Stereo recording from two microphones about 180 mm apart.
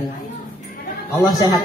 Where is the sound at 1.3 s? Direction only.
20° left (ahead or behind).